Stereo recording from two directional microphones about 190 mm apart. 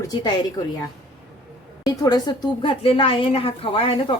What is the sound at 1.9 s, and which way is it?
A woman's voice, 20° left (ahead or behind).